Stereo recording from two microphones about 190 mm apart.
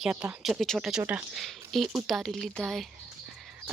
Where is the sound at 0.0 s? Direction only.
5° right (ahead or behind).